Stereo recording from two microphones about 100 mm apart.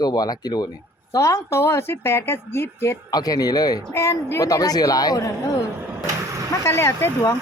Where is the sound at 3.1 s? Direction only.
40° left (ahead or behind).